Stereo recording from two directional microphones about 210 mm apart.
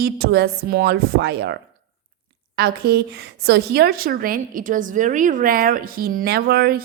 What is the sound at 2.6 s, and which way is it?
A woman's voice, 50° right (ahead or behind).